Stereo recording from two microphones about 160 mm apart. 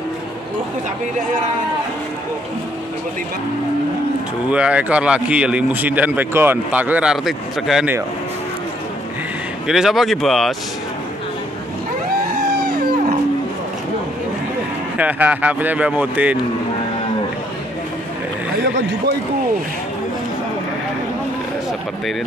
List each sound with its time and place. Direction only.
4.5 s a man's voice: 5° right (ahead or behind)
9.7 s speech: centre (ahead or behind)
12.4 s a sound: 75° right (ahead or behind)
15.0 s a man's voice: 10° right (ahead or behind)